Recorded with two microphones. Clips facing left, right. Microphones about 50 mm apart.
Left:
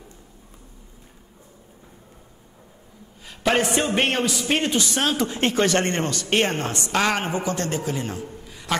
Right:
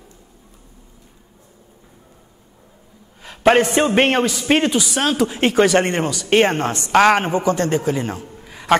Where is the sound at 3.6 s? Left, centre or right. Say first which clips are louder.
Right 6 dB; centre.